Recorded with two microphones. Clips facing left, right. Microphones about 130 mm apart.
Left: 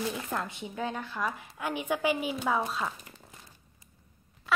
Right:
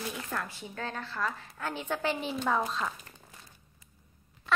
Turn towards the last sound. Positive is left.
turn(degrees=5)  # may be behind; listen again after turning